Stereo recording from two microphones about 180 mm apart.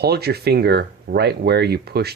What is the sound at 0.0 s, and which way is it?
Speech, 60° right (ahead or behind).